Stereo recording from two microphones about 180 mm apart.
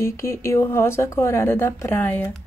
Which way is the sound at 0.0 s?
15° left (ahead or behind).